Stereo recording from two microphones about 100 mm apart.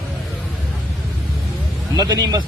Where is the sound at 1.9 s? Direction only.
45° right (ahead or behind).